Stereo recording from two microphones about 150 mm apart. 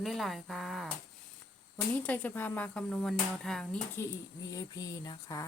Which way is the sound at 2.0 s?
10° left (ahead or behind).